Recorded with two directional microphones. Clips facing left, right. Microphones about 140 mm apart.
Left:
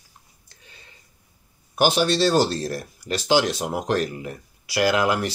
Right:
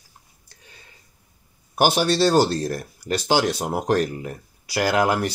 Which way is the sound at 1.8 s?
40° right (ahead or behind).